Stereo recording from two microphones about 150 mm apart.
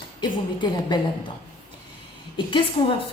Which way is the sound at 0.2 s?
30° left (ahead or behind).